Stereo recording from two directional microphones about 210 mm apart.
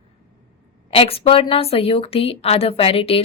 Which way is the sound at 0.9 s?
25° left (ahead or behind).